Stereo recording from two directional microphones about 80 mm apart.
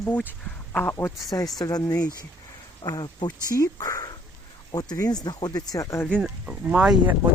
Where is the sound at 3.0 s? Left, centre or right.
Left.